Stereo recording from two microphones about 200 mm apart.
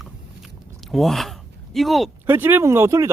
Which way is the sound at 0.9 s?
Centre (ahead or behind).